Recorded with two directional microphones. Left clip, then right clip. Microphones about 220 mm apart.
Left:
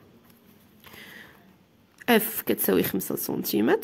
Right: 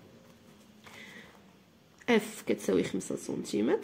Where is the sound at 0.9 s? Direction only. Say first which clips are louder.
Left 4 dB; 35° left (ahead or behind).